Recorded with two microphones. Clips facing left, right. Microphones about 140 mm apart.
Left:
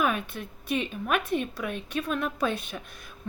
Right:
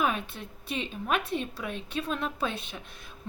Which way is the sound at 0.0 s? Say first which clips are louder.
Left 2 dB; 25° right (ahead or behind).